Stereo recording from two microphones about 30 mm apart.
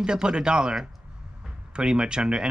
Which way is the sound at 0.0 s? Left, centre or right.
Right.